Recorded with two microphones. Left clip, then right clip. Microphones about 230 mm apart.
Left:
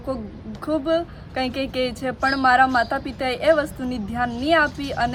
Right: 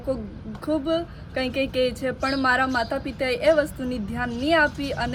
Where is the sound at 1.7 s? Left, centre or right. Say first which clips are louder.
Right 1 dB; centre.